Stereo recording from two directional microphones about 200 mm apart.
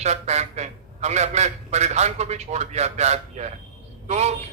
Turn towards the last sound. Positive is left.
turn(degrees=-35)  # may be behind; listen again after turning